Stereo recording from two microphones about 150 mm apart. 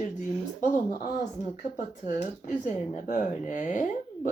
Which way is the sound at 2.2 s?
55° left (ahead or behind).